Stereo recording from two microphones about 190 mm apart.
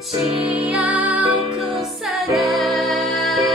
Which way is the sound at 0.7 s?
5° right (ahead or behind).